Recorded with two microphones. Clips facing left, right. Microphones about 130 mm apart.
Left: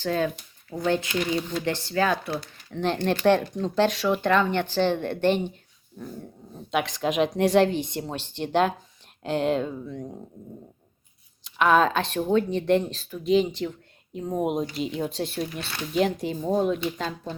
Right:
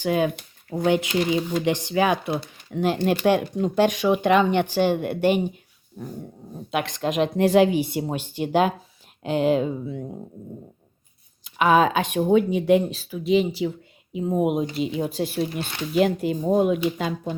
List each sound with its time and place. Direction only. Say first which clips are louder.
0.0 s speech: right 3 dB; 15° right (ahead or behind)
6.7 s speech: right 1 dB; centre (ahead or behind)
11.4 s speech: right 2 dB; 5° right (ahead or behind)